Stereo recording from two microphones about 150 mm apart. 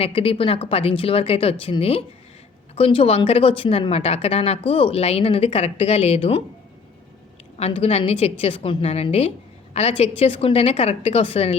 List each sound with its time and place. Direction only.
0.0 s speech: 40° left (ahead or behind)
7.6 s speech: 40° left (ahead or behind)